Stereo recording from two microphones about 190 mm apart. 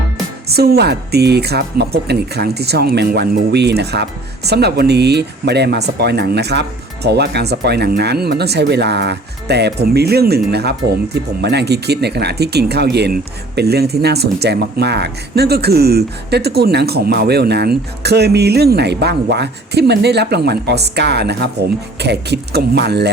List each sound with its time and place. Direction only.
0.4 s speech: 55° right (ahead or behind)